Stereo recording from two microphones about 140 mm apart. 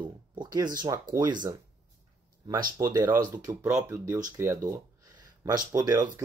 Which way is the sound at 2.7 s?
30° right (ahead or behind).